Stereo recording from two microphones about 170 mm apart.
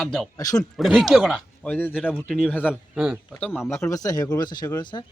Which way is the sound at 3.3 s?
10° left (ahead or behind).